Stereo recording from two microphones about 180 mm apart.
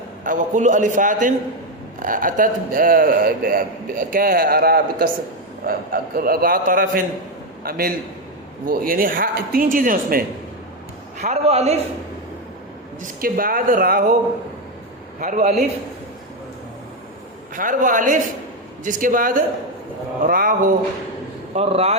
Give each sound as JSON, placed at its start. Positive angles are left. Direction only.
{"t": 0.3, "sound": "a man's voice", "side_deg": -45}
{"t": 11.2, "sound": "a man's voice", "side_deg": -35}
{"t": 13.0, "sound": "a man's voice", "side_deg": -50}
{"t": 15.2, "sound": "a man's voice", "side_deg": -45}
{"t": 17.5, "sound": "a man's voice", "side_deg": -50}
{"t": 21.5, "sound": "speech", "side_deg": -35}